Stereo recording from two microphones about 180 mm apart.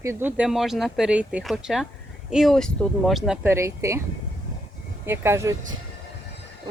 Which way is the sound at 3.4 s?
15° right (ahead or behind).